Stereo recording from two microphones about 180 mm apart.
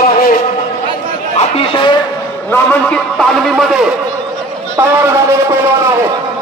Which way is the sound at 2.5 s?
10° left (ahead or behind).